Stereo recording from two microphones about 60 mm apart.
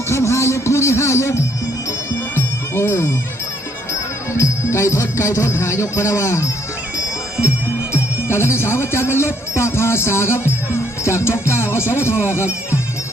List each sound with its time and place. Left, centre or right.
0.1 s music: left
4.4 s music: left
8.3 s music: left
11.8 s speech: right